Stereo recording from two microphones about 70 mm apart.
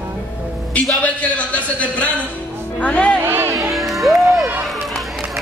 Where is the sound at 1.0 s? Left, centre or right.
Left.